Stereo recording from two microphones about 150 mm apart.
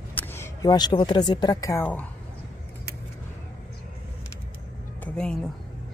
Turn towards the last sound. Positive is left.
turn(degrees=5)  # may be behind; listen again after turning